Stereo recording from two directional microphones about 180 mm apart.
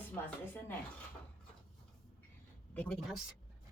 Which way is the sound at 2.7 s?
5° left (ahead or behind).